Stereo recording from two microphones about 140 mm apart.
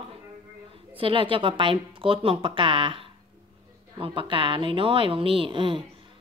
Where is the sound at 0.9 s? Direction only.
40° right (ahead or behind).